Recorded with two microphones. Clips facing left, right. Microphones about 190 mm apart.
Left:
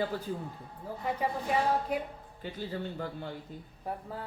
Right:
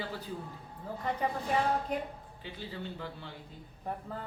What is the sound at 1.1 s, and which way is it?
Speech, 10° left (ahead or behind).